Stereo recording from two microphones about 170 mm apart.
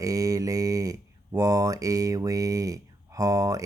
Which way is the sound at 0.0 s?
20° right (ahead or behind).